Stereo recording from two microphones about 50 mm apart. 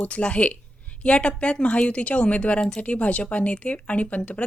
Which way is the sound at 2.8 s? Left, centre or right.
Left.